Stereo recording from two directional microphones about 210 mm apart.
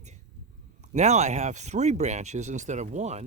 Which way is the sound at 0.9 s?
35° right (ahead or behind).